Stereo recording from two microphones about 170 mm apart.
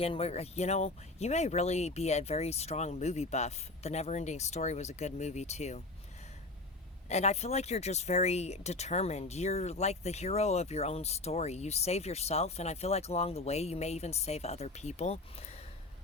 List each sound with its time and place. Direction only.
0.0 s speech: 35° left (ahead or behind)
7.1 s speech: 40° left (ahead or behind)